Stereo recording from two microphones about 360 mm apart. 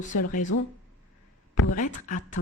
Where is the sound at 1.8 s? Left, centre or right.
Left.